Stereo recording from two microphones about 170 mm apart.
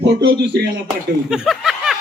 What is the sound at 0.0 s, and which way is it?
Speech, 80° right.